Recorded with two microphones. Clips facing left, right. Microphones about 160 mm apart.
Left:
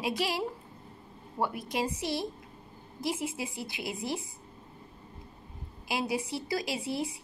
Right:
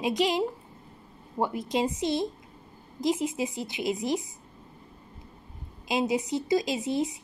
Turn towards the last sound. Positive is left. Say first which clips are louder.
# right 5 dB
turn(degrees=-20)  # may be behind; listen again after turning